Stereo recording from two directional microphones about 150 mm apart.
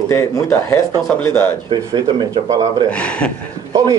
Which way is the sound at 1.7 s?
30° right (ahead or behind).